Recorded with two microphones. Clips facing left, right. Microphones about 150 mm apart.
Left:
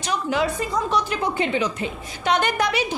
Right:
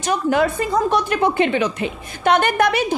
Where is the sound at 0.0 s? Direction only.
50° right (ahead or behind).